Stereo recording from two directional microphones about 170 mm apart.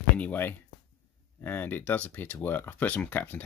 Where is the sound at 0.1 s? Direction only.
10° left (ahead or behind).